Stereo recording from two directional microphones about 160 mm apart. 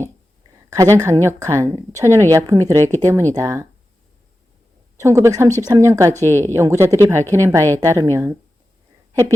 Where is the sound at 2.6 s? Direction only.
15° left (ahead or behind).